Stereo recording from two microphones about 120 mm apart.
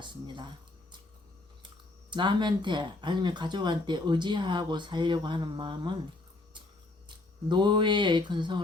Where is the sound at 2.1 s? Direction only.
40° right (ahead or behind).